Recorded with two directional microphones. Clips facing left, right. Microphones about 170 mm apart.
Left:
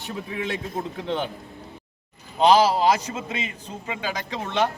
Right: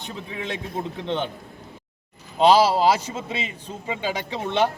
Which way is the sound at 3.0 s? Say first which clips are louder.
Even; 30° right (ahead or behind).